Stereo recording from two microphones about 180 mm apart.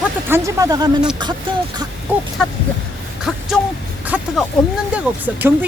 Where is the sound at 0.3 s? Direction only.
15° right (ahead or behind).